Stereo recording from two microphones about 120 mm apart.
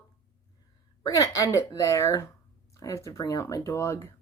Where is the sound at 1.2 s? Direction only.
30° left (ahead or behind).